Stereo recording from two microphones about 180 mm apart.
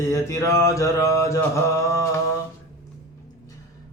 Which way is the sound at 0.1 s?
15° left (ahead or behind).